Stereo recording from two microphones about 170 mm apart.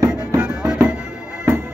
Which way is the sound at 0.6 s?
5° right (ahead or behind).